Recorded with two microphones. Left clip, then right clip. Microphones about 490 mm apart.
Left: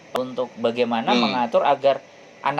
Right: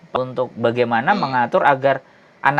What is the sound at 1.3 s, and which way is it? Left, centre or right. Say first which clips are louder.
A woman's voice: right 4 dB; right.